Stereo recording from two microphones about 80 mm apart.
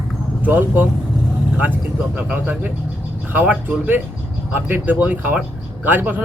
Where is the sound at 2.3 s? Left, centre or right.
Right.